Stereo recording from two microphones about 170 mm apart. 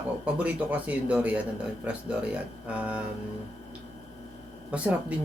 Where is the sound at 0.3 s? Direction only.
10° right (ahead or behind).